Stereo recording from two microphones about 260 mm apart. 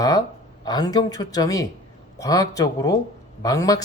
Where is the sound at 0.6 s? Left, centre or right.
Centre.